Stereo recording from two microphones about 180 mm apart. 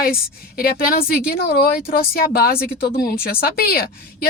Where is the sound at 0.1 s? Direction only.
55° left (ahead or behind).